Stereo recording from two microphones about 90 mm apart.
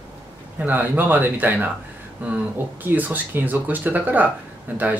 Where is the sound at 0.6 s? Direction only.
20° right (ahead or behind).